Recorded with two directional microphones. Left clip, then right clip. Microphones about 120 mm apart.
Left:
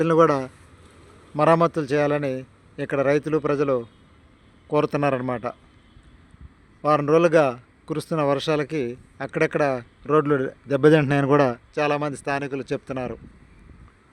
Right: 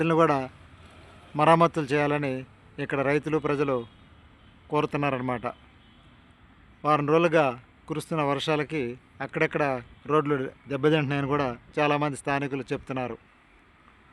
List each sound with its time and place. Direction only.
0.0 s a man's voice: 20° left (ahead or behind)
4.7 s a man's voice: 30° left (ahead or behind)
6.8 s a man's voice: 20° left (ahead or behind); by 11.5 s 45° left (ahead or behind)
11.7 s speech: 15° left (ahead or behind)